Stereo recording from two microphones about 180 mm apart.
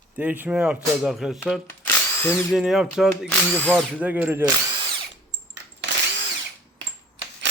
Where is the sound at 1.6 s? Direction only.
10° left (ahead or behind).